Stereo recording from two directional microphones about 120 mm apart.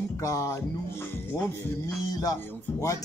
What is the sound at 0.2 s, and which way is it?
Music, 30° left (ahead or behind).